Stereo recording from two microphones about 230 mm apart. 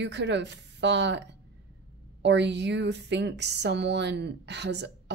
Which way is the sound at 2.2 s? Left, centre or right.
Right.